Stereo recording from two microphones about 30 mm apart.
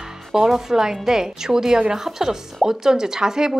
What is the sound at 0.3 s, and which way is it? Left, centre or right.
A woman's voice, centre.